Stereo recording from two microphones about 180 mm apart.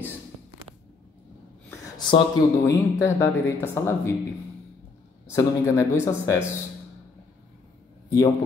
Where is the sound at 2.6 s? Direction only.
15° left (ahead or behind).